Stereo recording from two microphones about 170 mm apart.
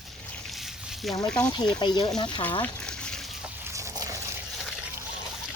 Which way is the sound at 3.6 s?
15° right (ahead or behind).